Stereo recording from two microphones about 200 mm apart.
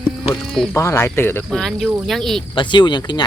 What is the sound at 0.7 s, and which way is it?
Speech, 15° left (ahead or behind).